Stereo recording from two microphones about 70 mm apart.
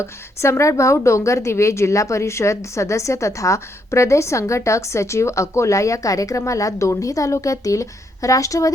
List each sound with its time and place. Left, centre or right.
0.0 s a woman's voice: left